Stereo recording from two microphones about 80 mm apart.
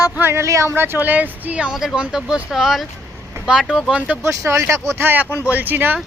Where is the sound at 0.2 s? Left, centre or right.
Right; by 3.9 s centre.